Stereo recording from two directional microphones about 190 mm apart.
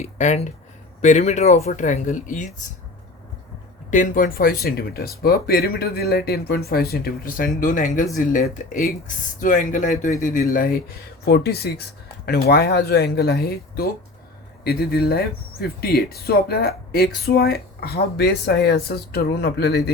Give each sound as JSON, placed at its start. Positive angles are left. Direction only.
{"t": 0.0, "sound": "speech", "side_deg": 35}
{"t": 3.9, "sound": "speech", "side_deg": 45}